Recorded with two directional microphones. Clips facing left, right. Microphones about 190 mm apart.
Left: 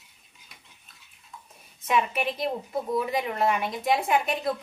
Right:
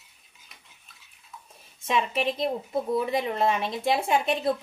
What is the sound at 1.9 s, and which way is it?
Speech, 25° right (ahead or behind).